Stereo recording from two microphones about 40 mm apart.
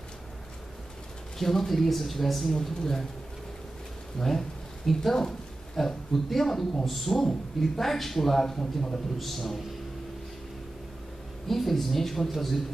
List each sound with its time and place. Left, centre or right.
1.4 s a man's voice: centre
4.2 s a man's voice: centre
11.4 s speech: centre